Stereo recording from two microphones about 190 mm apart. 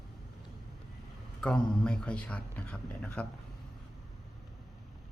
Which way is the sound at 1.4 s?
5° left (ahead or behind).